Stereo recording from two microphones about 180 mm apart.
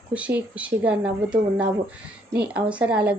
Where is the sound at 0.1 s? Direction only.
10° right (ahead or behind).